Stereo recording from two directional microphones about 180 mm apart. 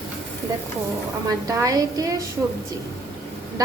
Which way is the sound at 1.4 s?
20° right (ahead or behind).